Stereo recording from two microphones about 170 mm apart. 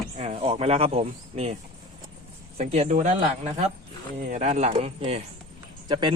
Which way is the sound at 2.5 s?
40° right (ahead or behind).